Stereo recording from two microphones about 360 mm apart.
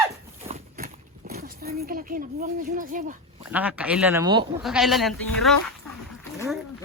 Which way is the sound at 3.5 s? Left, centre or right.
Centre.